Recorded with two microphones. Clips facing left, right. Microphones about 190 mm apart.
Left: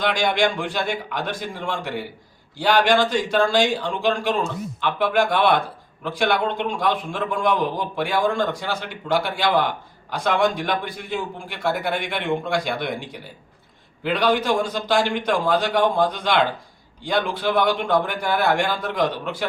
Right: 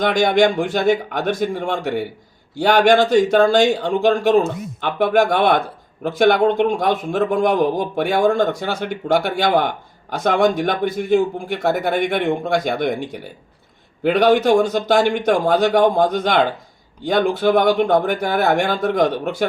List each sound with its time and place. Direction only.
0.0 s a man's voice: 45° right (ahead or behind)